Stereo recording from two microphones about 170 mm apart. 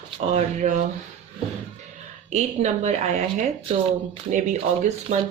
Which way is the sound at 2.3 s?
40° right (ahead or behind).